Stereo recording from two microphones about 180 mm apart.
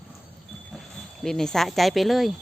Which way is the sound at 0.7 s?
Centre (ahead or behind).